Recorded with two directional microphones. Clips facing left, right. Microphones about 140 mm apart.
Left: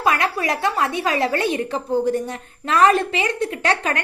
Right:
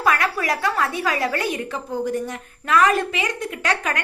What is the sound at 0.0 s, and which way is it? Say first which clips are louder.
A woman's voice: left 1 dB; 20° left (ahead or behind).